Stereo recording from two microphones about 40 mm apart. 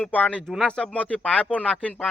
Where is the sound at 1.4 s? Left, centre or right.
Left.